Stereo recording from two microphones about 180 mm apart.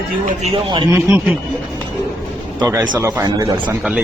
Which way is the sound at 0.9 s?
15° right (ahead or behind).